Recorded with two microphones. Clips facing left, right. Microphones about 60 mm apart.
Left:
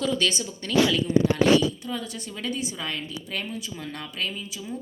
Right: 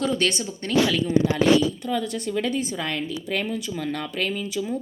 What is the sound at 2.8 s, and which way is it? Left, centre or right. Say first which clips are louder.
Speech: right 5 dB; right.